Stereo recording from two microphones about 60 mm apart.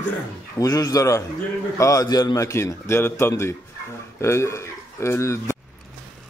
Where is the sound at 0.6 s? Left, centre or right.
Left.